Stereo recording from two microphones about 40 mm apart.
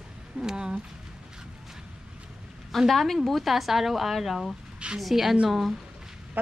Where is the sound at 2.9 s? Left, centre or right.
Centre.